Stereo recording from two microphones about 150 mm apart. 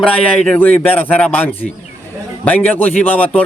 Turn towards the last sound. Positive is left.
turn(degrees=10)  # may be behind; listen again after turning